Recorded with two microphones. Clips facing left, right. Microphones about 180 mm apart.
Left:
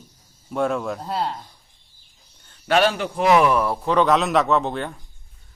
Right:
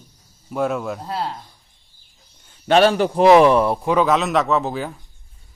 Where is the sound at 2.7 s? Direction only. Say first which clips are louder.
Right 5 dB; 30° right (ahead or behind).